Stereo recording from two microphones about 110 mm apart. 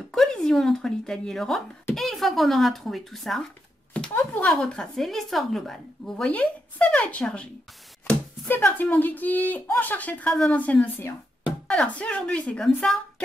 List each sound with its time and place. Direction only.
0.1 s a child's voice: 5° left (ahead or behind)
4.1 s a sound: 15° left (ahead or behind)
4.6 s a child's voice: 5° left (ahead or behind)